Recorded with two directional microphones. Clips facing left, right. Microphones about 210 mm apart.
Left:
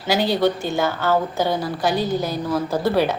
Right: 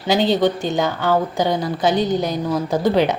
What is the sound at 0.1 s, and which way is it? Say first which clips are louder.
Speech: right 2 dB; 20° right (ahead or behind).